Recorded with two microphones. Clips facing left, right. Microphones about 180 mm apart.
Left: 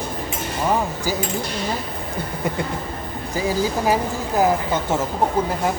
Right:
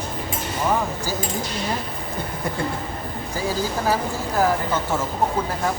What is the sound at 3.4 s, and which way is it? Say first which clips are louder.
Speech: left 3 dB; 15° left (ahead or behind).